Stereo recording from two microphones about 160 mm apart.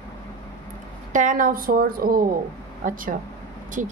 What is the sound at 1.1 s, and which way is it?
Speech, 55° right (ahead or behind).